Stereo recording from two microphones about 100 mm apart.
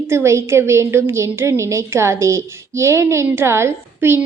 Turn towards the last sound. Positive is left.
turn(degrees=-25)  # may be behind; listen again after turning